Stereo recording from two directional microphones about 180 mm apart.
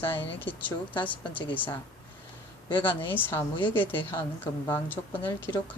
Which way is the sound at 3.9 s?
30° left (ahead or behind).